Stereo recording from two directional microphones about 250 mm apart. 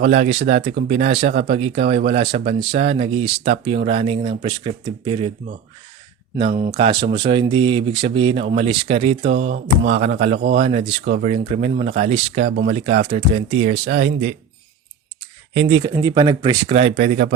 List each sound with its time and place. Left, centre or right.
0.0 s speech: right
6.7 s speech: centre
15.5 s speech: centre